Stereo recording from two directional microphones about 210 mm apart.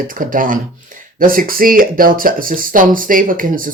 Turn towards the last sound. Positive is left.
turn(degrees=-40)  # may be behind; listen again after turning